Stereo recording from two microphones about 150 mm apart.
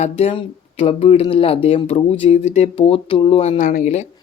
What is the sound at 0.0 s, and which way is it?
Speech, 40° left (ahead or behind).